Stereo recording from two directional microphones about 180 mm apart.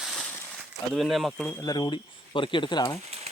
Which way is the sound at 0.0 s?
Centre (ahead or behind).